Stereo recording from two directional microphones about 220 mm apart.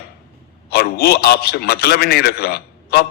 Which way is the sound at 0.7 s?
45° left (ahead or behind).